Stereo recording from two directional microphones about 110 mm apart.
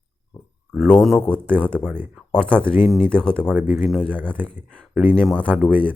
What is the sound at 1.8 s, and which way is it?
Speech, 15° right (ahead or behind).